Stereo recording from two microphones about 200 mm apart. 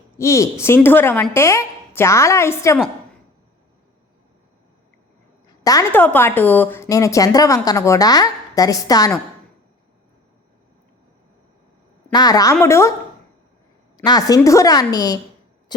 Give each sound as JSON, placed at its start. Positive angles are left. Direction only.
{"t": 0.2, "sound": "a woman's voice", "side_deg": 15}
{"t": 5.6, "sound": "a woman's voice", "side_deg": 15}
{"t": 12.1, "sound": "a woman's voice", "side_deg": 20}
{"t": 13.9, "sound": "a woman's voice", "side_deg": 20}